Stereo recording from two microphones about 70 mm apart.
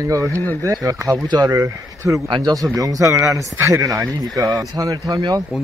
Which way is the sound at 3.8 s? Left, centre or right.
Right.